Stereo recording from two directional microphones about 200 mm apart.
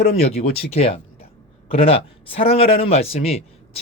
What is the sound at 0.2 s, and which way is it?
A man's voice, 30° left (ahead or behind).